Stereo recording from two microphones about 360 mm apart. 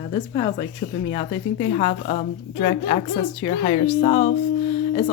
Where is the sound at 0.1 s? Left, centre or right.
Centre.